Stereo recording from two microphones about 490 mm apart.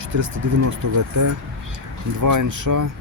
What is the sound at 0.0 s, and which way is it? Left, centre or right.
Speech, right.